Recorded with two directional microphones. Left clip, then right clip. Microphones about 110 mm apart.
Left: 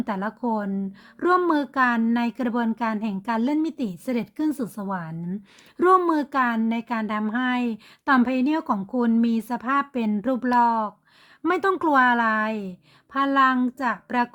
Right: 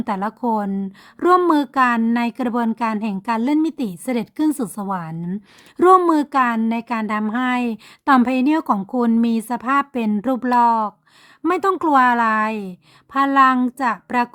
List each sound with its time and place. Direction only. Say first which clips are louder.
0.0 s a woman's voice: right 5 dB; 30° right (ahead or behind)